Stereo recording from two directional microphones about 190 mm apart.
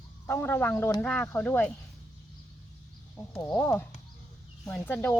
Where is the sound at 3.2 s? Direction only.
15° left (ahead or behind).